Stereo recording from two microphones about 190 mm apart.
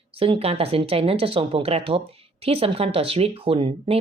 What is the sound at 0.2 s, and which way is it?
Speech, 30° right (ahead or behind).